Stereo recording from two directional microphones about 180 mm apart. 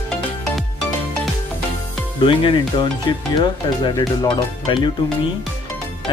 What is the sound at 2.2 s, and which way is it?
Speech, 30° left (ahead or behind).